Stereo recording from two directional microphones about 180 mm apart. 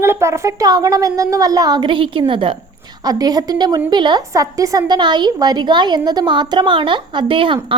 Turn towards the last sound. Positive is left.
turn(degrees=-30)  # may be behind; listen again after turning